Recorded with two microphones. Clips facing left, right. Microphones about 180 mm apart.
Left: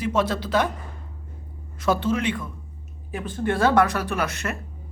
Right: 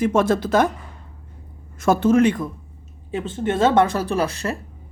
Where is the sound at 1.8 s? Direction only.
45° right (ahead or behind).